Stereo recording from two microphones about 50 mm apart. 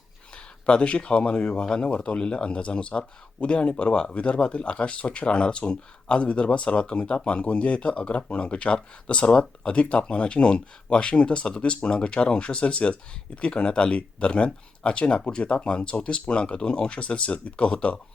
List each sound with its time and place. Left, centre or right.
0.6 s speech: left